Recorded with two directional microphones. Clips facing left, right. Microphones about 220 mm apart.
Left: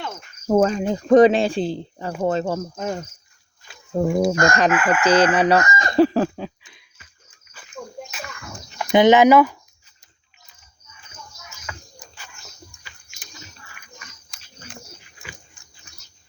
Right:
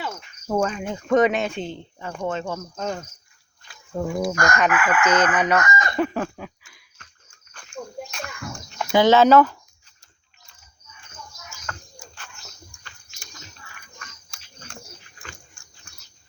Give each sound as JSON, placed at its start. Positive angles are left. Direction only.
{"t": 0.0, "sound": "cricket", "side_deg": 0}
{"t": 0.4, "sound": "chicken", "side_deg": 40}
{"t": 3.9, "sound": "chicken", "side_deg": 25}
{"t": 7.5, "sound": "a sound", "side_deg": 5}
{"t": 8.9, "sound": "speech", "side_deg": 20}
{"t": 11.9, "sound": "a sound", "side_deg": 10}
{"t": 12.8, "sound": "chewing", "side_deg": 10}